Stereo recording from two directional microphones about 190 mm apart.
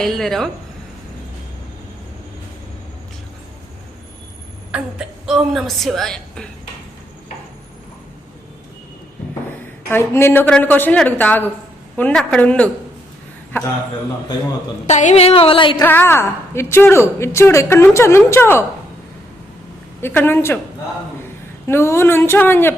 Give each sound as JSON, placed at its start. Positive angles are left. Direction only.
{"t": 0.0, "sound": "speech", "side_deg": 0}
{"t": 4.7, "sound": "a woman's voice", "side_deg": -5}
{"t": 9.9, "sound": "a woman's voice", "side_deg": 15}
{"t": 14.8, "sound": "a woman's voice", "side_deg": 35}
{"t": 15.8, "sound": "a woman's voice", "side_deg": 10}
{"t": 20.0, "sound": "a woman's voice", "side_deg": 10}
{"t": 21.7, "sound": "a woman's voice", "side_deg": 15}